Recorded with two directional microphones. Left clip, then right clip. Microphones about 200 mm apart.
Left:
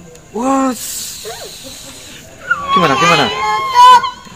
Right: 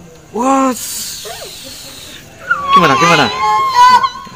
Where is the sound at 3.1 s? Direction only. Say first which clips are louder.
Right 1 dB; 25° right (ahead or behind).